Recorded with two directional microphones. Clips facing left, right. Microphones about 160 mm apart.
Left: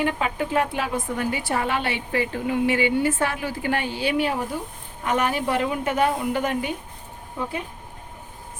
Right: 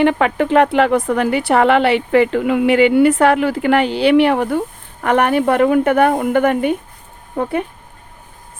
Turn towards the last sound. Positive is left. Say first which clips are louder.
# right 10 dB
turn(degrees=-60)  # may be behind; listen again after turning